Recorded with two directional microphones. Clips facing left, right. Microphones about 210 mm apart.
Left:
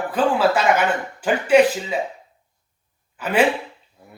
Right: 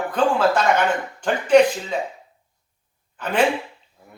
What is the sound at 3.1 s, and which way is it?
Speech, 5° left (ahead or behind).